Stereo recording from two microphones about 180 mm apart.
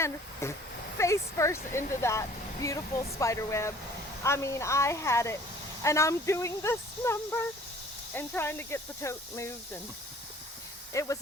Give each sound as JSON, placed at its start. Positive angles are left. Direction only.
{"t": 0.4, "sound": "speech", "side_deg": 15}
{"t": 10.9, "sound": "speech", "side_deg": 15}